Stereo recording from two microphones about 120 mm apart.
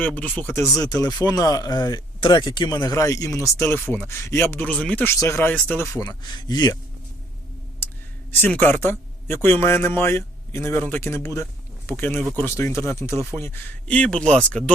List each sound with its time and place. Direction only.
0.0 s speech: 15° left (ahead or behind)
1.0 s speech: 30° left (ahead or behind); by 5.1 s 10° left (ahead or behind)
5.1 s speech: 25° left (ahead or behind)
5.5 s speech: 15° left (ahead or behind)
6.2 s speech: 35° left (ahead or behind)
8.3 s speech: 15° left (ahead or behind)